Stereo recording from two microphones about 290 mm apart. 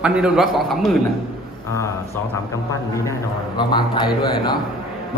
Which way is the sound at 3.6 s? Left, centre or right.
Centre.